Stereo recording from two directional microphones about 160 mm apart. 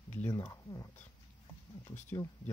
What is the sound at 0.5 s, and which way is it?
Speech, 20° left (ahead or behind).